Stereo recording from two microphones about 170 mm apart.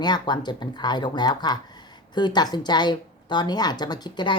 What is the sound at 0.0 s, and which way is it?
Speech, 25° left (ahead or behind).